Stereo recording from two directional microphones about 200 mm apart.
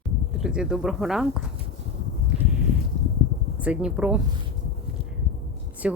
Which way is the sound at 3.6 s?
5° right (ahead or behind).